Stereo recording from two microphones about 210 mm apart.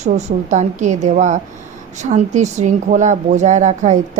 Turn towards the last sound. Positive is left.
turn(degrees=-35)  # may be behind; listen again after turning